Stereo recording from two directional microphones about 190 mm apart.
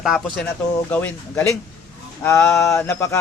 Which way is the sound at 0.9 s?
10° left (ahead or behind).